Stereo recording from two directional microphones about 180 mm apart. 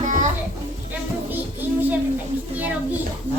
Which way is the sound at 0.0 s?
45° right (ahead or behind).